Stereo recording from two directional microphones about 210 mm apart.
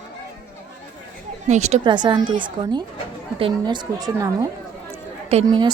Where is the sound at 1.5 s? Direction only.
30° right (ahead or behind).